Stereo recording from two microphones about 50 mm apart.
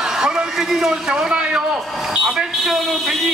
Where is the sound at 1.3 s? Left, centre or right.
Centre.